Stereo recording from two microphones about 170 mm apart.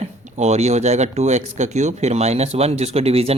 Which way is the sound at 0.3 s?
40° right (ahead or behind).